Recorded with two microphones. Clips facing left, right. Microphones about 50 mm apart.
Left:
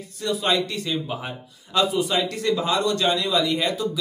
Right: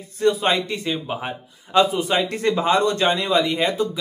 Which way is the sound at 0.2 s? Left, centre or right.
Right.